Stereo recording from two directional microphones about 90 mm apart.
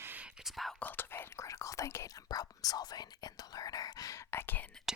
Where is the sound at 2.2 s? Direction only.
45° left (ahead or behind).